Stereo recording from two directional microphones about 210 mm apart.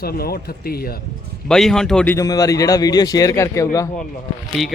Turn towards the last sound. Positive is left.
turn(degrees=0)  # may be behind; listen again after turning